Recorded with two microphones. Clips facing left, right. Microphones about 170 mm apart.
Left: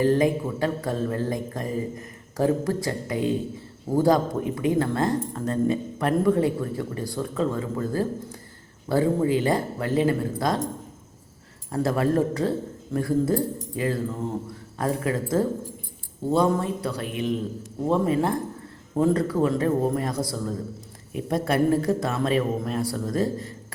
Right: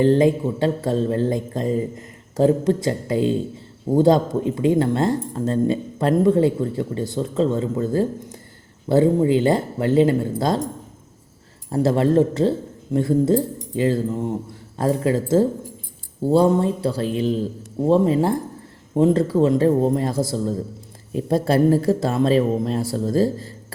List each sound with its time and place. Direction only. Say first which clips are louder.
0.0 s speech: right 5 dB; 25° right (ahead or behind)
11.7 s speech: right 5 dB; 25° right (ahead or behind)